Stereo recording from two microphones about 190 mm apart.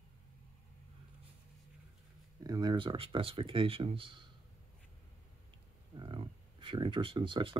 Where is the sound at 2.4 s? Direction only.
20° right (ahead or behind).